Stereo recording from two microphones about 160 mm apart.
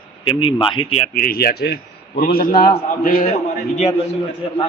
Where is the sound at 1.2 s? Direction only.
70° left (ahead or behind).